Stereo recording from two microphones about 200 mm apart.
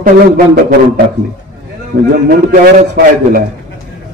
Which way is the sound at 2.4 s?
50° right (ahead or behind).